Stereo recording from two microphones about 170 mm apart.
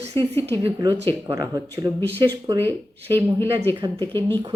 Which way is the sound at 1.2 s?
20° right (ahead or behind).